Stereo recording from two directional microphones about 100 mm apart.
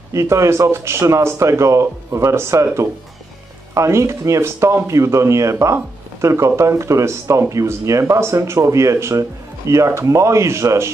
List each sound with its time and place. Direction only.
0.1 s speech: 30° right (ahead or behind)